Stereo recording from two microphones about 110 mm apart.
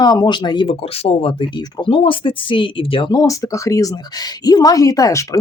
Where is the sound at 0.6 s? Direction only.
60° left (ahead or behind); by 1.9 s 40° left (ahead or behind).